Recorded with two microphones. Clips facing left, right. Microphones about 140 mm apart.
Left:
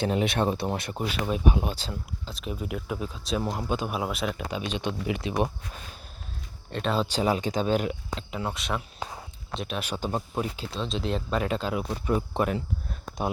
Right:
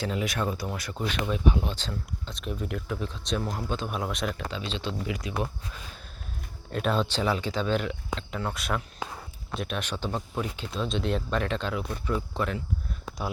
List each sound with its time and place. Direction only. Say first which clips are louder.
0.0 s speech: left 4 dB; 25° left (ahead or behind)
1.5 s speech: left 1 dB; 10° left (ahead or behind)
6.7 s speech: even; centre (ahead or behind)
7.1 s speech: left 2 dB; 15° left (ahead or behind)
8.5 s speech: even; centre (ahead or behind)
10.7 s speech: right 1 dB; centre (ahead or behind)
11.7 s speech: left 3 dB; 20° left (ahead or behind)